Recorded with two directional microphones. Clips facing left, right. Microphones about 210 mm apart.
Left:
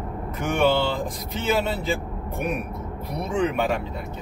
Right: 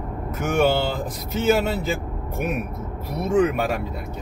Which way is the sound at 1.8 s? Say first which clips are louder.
Right 1 dB; 5° right (ahead or behind).